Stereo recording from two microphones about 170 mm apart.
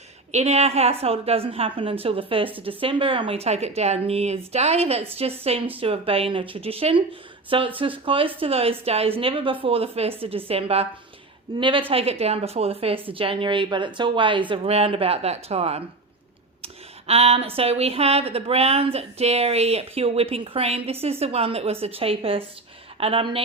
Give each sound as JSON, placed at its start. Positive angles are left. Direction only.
{"t": 0.3, "sound": "a woman's voice", "side_deg": -40}
{"t": 17.1, "sound": "speech", "side_deg": -35}